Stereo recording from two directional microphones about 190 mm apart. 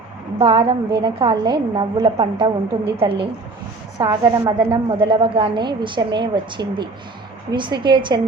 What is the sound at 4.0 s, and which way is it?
A woman's voice, 25° right (ahead or behind).